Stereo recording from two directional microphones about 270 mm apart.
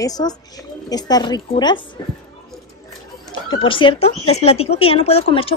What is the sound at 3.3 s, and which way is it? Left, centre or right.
Speech, centre.